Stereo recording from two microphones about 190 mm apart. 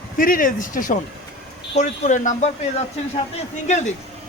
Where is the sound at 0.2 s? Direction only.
50° left (ahead or behind).